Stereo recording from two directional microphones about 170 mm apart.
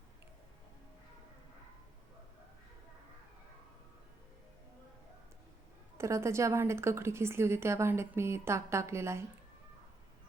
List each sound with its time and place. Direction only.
6.0 s a woman's voice: 15° right (ahead or behind)